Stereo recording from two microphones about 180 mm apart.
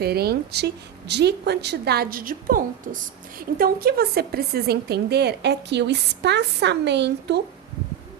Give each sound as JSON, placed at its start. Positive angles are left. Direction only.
{"t": 0.0, "sound": "a woman's voice", "side_deg": -60}